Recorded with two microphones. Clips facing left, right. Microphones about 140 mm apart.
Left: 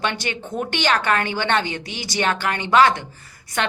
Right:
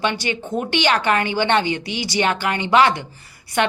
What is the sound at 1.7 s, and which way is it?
Speech, 50° left (ahead or behind).